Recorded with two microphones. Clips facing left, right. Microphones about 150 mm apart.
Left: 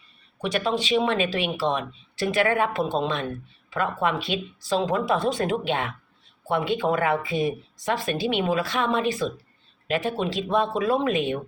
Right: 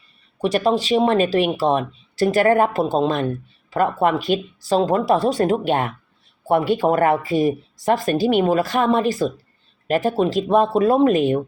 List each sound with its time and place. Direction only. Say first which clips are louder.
0.4 s speech: right 7 dB; 40° right (ahead or behind)